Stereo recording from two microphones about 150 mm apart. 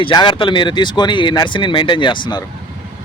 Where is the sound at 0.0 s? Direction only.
30° left (ahead or behind).